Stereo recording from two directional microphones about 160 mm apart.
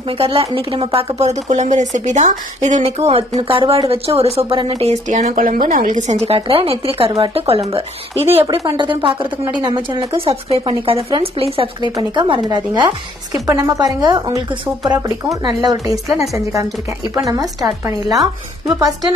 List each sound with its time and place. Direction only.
0.2 s speech: 35° right (ahead or behind); by 16.6 s 20° right (ahead or behind)
17.6 s speech: 20° right (ahead or behind)